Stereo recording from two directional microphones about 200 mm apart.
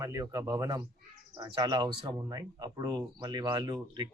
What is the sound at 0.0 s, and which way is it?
A man's voice, 15° right (ahead or behind).